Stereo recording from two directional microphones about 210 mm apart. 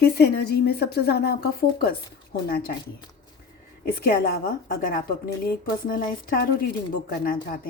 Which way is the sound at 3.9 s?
45° left (ahead or behind).